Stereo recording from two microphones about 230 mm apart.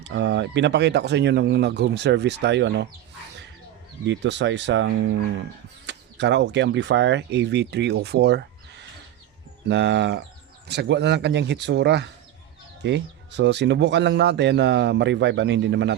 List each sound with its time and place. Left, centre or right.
0.0 s speech: right
4.0 s speech: right